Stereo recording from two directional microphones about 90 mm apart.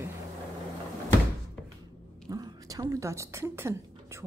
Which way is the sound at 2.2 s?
45° right (ahead or behind).